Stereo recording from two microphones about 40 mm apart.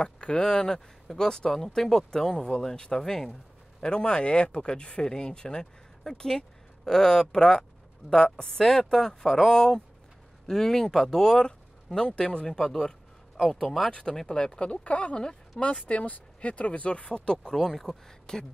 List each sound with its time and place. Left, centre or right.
0.0 s speech: left; by 13.7 s centre
14.1 s speech: centre